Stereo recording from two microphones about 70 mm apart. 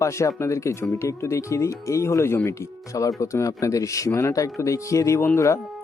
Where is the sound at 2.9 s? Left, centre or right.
Left.